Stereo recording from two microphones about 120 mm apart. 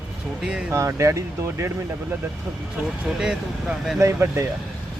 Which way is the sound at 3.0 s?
5° right (ahead or behind).